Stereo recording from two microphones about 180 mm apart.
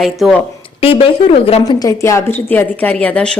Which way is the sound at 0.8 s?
30° left (ahead or behind).